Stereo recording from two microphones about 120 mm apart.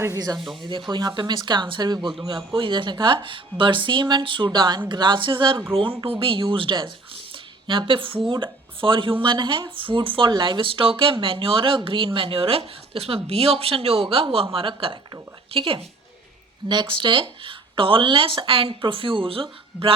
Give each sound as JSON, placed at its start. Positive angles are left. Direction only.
{"t": 0.0, "sound": "speech", "side_deg": -30}
{"t": 0.3, "sound": "speech", "side_deg": 0}
{"t": 0.9, "sound": "speech", "side_deg": -40}